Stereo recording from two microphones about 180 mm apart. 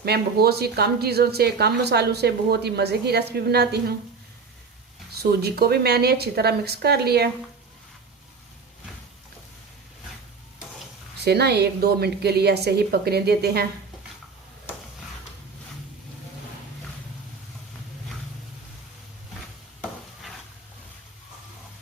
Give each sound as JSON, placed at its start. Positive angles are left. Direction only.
{"t": 0.0, "sound": "a woman's voice", "side_deg": -60}
{"t": 5.1, "sound": "a woman's voice", "side_deg": -60}
{"t": 11.2, "sound": "a woman's voice", "side_deg": -65}